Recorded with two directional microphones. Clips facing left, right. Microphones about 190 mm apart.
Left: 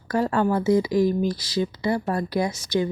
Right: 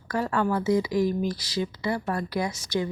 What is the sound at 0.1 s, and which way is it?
Speech, 30° left (ahead or behind).